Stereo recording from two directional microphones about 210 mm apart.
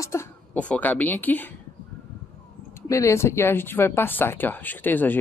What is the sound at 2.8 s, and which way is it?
Speech, 15° left (ahead or behind).